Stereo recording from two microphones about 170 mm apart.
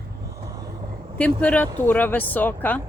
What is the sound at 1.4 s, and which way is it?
Speech, 10° left (ahead or behind).